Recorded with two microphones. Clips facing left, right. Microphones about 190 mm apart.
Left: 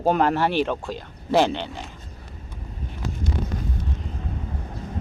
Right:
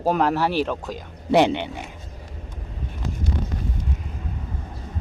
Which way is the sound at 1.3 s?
15° right (ahead or behind).